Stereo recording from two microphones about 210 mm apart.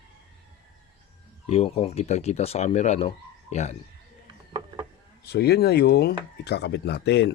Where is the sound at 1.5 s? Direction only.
30° left (ahead or behind).